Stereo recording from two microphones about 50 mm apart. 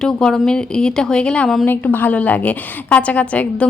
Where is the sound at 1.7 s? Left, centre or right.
Left.